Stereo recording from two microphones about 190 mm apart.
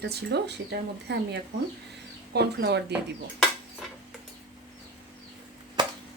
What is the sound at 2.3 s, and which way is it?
Speech, 60° right (ahead or behind).